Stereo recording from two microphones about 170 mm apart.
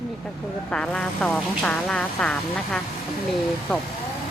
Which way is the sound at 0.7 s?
5° left (ahead or behind).